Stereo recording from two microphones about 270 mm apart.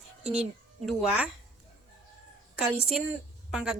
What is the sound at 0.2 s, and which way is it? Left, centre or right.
A woman's voice, centre.